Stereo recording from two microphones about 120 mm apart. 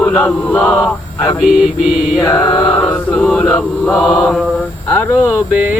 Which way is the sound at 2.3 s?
40° left (ahead or behind).